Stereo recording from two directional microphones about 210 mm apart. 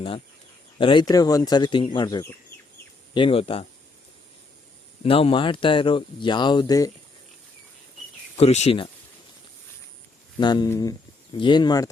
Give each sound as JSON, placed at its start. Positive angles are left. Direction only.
{"t": 0.8, "sound": "speech", "side_deg": 20}
{"t": 5.0, "sound": "speech", "side_deg": 25}
{"t": 8.4, "sound": "speech", "side_deg": 30}
{"t": 10.4, "sound": "speech", "side_deg": 20}